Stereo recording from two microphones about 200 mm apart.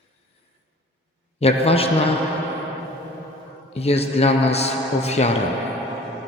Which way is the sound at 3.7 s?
30° left (ahead or behind).